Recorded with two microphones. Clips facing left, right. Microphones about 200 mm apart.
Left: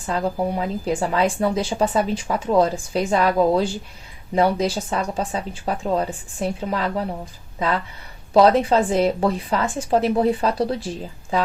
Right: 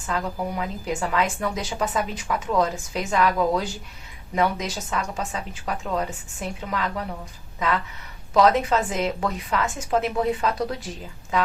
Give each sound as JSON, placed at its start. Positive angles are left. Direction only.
{"t": 0.0, "sound": "speech", "side_deg": 30}
{"t": 8.3, "sound": "speech", "side_deg": 30}